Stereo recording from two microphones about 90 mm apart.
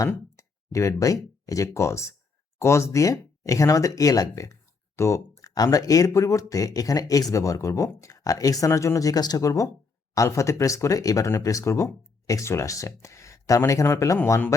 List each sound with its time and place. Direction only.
0.3 s speech: 35° left (ahead or behind)